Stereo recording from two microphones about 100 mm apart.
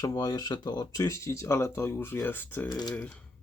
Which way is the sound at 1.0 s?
30° left (ahead or behind).